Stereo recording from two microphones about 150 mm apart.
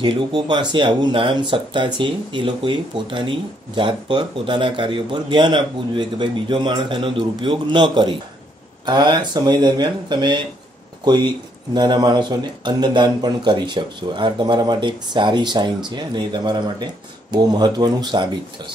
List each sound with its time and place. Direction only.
0.0 s speech: 30° right (ahead or behind)
11.7 s speech: 30° right (ahead or behind)